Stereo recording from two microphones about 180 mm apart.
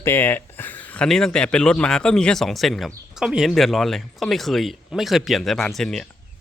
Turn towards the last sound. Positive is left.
turn(degrees=0)  # may be behind; listen again after turning